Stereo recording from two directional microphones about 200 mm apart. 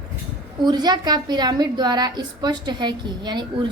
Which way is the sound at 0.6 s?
20° right (ahead or behind).